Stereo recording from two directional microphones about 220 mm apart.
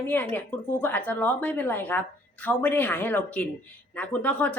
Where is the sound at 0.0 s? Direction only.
5° left (ahead or behind).